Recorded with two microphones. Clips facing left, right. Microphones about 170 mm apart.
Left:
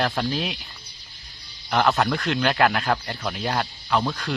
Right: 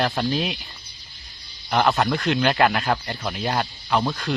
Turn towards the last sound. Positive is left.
turn(degrees=-5)  # may be behind; listen again after turning